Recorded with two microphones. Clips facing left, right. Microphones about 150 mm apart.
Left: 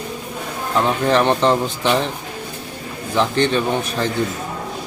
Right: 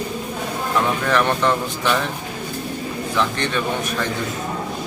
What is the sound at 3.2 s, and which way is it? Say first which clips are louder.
Speech: left 6 dB; 30° left (ahead or behind).